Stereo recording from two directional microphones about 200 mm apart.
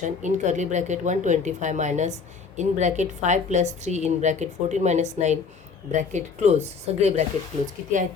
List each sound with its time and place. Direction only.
0.0 s a woman's voice: 35° right (ahead or behind)